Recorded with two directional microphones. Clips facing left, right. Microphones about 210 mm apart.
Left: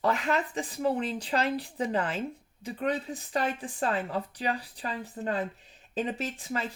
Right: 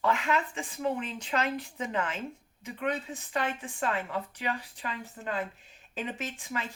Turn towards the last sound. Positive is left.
turn(degrees=35)  # may be behind; listen again after turning